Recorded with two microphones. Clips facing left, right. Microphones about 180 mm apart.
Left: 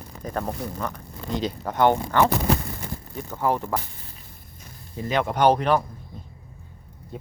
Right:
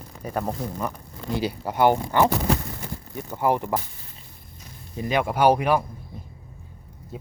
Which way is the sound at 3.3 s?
15° right (ahead or behind).